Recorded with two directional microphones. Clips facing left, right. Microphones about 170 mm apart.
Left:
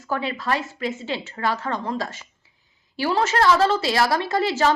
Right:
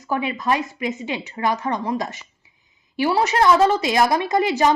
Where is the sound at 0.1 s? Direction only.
15° right (ahead or behind).